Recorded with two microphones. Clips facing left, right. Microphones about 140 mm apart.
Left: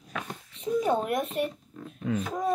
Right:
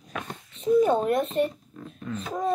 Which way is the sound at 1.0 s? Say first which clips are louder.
Right 5 dB; 10° left (ahead or behind).